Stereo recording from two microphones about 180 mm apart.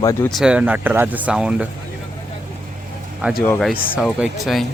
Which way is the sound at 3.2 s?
10° right (ahead or behind).